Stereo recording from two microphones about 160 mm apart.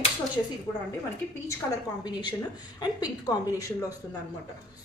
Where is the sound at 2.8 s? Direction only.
25° left (ahead or behind).